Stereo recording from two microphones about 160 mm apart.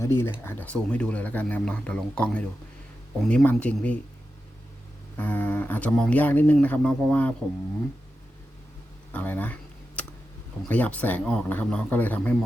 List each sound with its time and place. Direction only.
0.0 s speech: 15° left (ahead or behind)
5.1 s speech: 10° left (ahead or behind)
9.1 s computer keyboard: 10° left (ahead or behind)
10.7 s speech: 10° left (ahead or behind)